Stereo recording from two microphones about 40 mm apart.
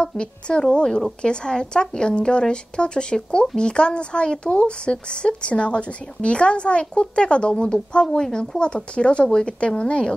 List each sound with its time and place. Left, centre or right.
0.0 s speech: left